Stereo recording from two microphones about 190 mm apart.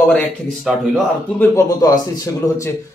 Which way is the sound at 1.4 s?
15° left (ahead or behind).